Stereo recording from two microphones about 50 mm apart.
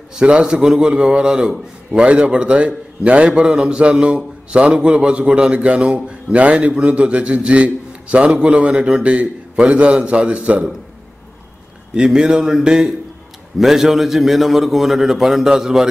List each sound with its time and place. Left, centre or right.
0.1 s a man's voice: centre
11.9 s a man's voice: centre